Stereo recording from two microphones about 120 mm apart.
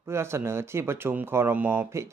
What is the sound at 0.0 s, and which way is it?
Speech, 20° right (ahead or behind).